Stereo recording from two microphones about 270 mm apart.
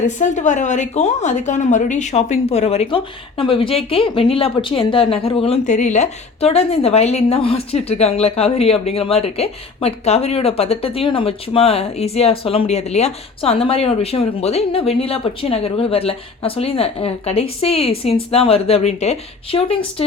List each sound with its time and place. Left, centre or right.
0.2 s a woman's voice: left